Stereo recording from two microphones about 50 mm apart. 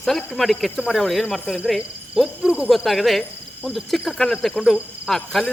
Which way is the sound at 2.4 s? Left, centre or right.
Centre.